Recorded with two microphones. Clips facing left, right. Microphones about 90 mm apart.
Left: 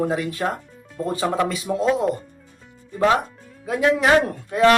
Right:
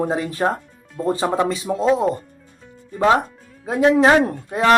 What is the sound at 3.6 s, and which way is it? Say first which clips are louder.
Speech: right 4 dB; 30° right (ahead or behind).